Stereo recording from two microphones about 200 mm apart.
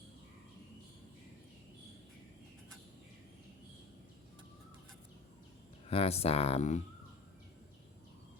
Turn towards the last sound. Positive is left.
turn(degrees=35)  # may be behind; listen again after turning